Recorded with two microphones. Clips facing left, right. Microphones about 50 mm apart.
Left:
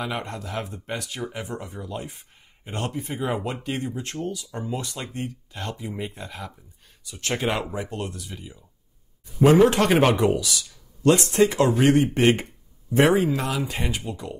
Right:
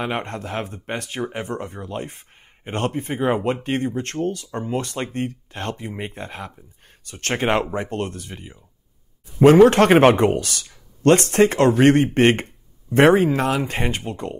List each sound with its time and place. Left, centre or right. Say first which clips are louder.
0.0 s speech: right 4 dB; right